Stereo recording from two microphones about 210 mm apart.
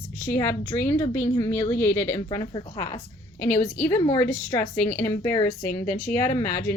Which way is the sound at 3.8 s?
15° left (ahead or behind).